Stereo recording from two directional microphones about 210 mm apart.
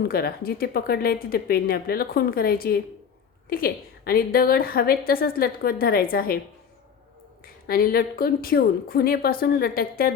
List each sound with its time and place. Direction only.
0.0 s a woman's voice: 50° left (ahead or behind)
7.4 s a woman's voice: 45° left (ahead or behind)